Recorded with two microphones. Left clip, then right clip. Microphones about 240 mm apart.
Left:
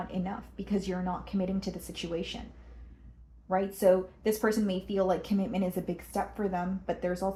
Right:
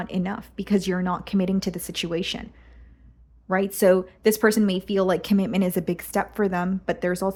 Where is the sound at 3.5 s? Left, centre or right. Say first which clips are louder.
Right 6 dB; right.